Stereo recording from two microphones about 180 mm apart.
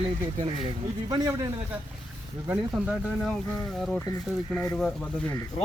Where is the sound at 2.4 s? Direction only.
10° right (ahead or behind).